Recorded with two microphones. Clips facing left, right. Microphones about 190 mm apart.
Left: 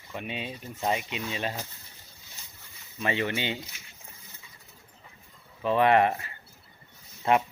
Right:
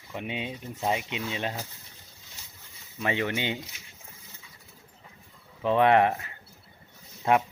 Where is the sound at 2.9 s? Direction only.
15° right (ahead or behind).